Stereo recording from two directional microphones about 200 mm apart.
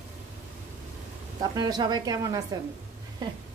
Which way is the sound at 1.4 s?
20° right (ahead or behind).